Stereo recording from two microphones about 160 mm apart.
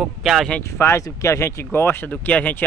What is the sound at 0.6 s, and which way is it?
Speech, 15° left (ahead or behind).